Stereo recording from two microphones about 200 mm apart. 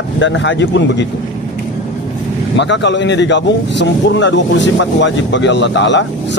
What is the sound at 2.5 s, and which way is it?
Speech, 65° left (ahead or behind).